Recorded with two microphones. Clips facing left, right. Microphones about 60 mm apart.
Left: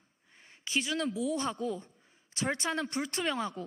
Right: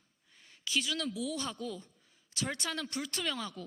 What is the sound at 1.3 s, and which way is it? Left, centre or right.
A woman's voice, left.